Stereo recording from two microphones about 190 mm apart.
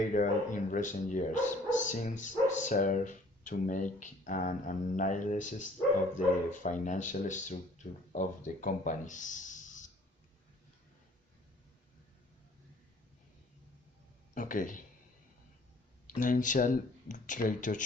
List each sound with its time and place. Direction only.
0.1 s speech: 40° left (ahead or behind)
14.3 s speech: 45° left (ahead or behind)
16.0 s speech: 45° left (ahead or behind)